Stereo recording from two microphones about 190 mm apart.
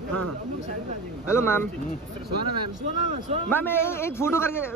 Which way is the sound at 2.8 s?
40° right (ahead or behind).